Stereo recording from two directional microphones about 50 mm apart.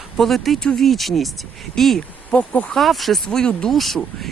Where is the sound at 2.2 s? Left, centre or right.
Left.